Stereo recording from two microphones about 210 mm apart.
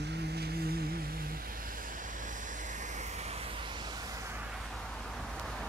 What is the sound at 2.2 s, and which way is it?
Vehicle, 35° right (ahead or behind).